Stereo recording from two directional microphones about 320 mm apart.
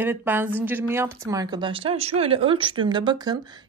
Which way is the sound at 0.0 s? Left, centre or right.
Centre.